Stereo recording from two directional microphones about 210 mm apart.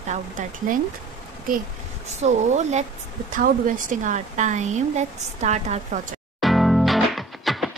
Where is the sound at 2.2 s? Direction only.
30° right (ahead or behind).